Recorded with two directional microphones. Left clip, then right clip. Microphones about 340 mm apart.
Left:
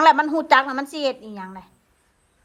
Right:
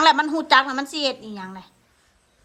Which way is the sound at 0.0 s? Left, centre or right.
Centre.